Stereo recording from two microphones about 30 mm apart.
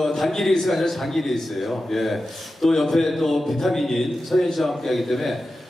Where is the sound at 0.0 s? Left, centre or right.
Centre.